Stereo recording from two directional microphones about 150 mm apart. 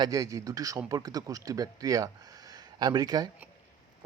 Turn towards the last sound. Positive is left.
turn(degrees=-25)  # may be behind; listen again after turning